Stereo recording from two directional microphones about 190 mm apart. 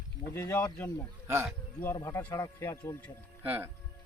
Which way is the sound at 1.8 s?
15° left (ahead or behind).